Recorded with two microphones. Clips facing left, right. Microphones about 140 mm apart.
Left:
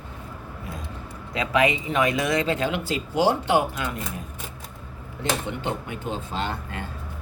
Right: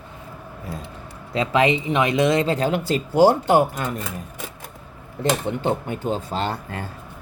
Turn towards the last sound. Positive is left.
turn(degrees=-35)  # may be behind; listen again after turning